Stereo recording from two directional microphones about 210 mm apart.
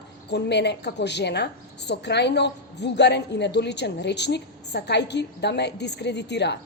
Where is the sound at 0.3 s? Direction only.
55° left (ahead or behind).